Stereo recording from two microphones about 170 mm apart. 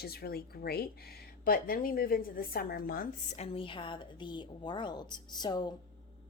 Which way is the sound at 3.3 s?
35° left (ahead or behind).